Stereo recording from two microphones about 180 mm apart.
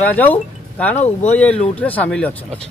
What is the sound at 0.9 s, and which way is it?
Speech, 40° left (ahead or behind).